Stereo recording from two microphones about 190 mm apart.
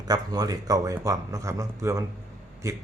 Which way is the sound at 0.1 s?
20° right (ahead or behind).